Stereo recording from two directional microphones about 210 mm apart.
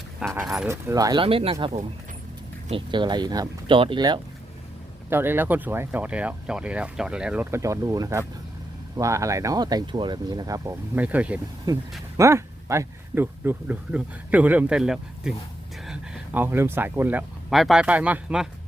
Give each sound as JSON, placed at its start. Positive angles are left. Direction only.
{"t": 0.2, "sound": "speech", "side_deg": 0}
{"t": 0.7, "sound": "speech", "side_deg": -15}
{"t": 2.6, "sound": "speech", "side_deg": -25}
{"t": 5.0, "sound": "speech", "side_deg": -10}